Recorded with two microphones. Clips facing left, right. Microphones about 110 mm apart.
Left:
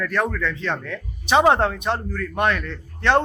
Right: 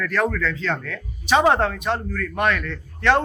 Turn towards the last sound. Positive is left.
turn(degrees=25)  # may be behind; listen again after turning